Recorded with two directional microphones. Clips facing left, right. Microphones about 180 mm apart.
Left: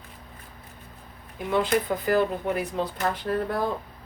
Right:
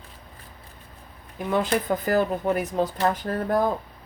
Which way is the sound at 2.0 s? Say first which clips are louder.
Right 2 dB; 45° right (ahead or behind).